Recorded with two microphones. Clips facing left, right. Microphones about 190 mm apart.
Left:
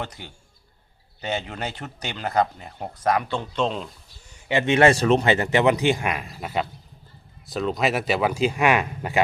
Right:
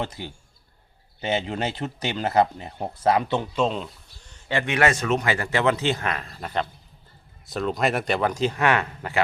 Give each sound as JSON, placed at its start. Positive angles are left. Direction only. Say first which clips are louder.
{"t": 1.2, "sound": "speech", "louder": "right 3 dB", "side_deg": -25}
{"t": 3.5, "sound": "speech", "louder": "left 1 dB", "side_deg": -5}
{"t": 4.3, "sound": "a man's voice", "louder": "left 4 dB", "side_deg": 15}